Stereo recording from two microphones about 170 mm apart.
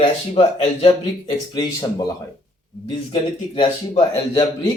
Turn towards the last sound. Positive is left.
turn(degrees=30)  # may be behind; listen again after turning